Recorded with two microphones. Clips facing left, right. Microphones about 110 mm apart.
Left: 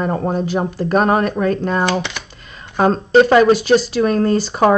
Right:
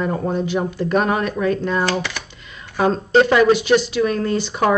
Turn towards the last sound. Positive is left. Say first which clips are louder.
# left 4 dB
turn(degrees=35)  # may be behind; listen again after turning